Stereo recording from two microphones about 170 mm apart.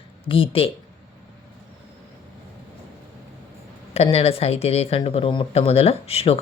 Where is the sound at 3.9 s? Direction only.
35° left (ahead or behind).